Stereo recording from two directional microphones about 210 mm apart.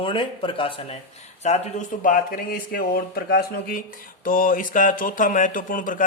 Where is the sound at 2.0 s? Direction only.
45° left (ahead or behind).